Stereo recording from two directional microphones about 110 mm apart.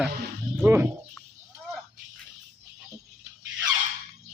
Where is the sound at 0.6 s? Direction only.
20° right (ahead or behind).